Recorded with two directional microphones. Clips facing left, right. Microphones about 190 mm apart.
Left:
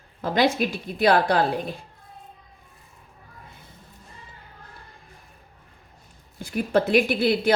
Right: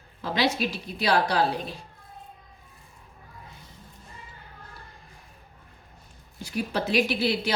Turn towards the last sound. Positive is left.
turn(degrees=50)  # may be behind; listen again after turning